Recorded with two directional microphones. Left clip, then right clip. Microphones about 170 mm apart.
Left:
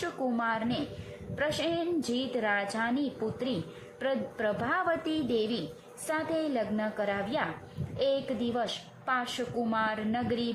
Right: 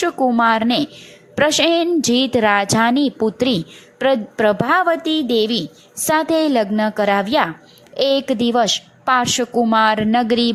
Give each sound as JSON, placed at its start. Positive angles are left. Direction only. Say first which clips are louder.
{"t": 0.0, "sound": "a woman's voice", "louder": "right 16 dB", "side_deg": -45}